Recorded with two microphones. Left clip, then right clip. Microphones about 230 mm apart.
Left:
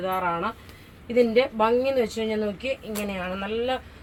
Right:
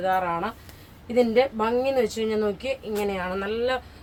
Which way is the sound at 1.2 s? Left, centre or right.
Centre.